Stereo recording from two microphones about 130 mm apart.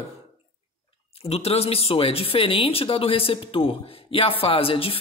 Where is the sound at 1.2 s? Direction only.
50° left (ahead or behind).